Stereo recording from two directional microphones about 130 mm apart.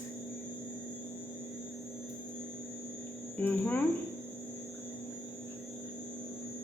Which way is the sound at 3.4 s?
10° left (ahead or behind).